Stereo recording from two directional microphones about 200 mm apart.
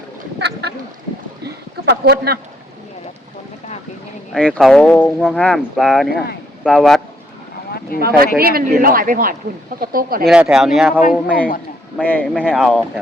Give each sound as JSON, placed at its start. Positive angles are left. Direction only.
{"t": 0.3, "sound": "duck", "side_deg": -55}
{"t": 1.8, "sound": "speech", "side_deg": -55}
{"t": 4.3, "sound": "speech", "side_deg": 5}
{"t": 7.9, "sound": "a man's voice", "side_deg": -50}
{"t": 10.2, "sound": "a man's voice", "side_deg": -5}